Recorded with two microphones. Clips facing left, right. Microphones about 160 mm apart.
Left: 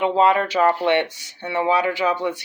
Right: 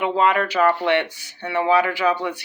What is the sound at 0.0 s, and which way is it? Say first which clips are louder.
Speech: left 2 dB; 25° left (ahead or behind).